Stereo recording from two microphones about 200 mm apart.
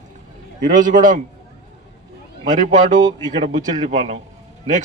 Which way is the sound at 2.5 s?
40° right (ahead or behind).